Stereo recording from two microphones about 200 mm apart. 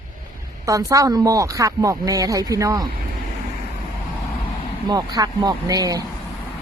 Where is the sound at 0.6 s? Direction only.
15° right (ahead or behind).